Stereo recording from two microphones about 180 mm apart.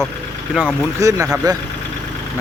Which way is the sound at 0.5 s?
Centre (ahead or behind).